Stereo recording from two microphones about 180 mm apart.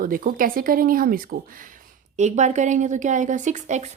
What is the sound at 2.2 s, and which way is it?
A woman's voice, 40° right (ahead or behind).